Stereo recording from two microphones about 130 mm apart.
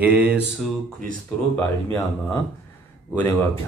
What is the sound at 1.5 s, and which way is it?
Speech, 20° left (ahead or behind).